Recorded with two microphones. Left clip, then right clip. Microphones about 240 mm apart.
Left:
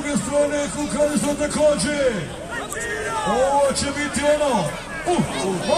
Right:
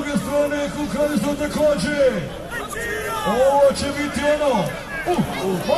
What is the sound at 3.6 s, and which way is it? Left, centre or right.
A man's voice, left.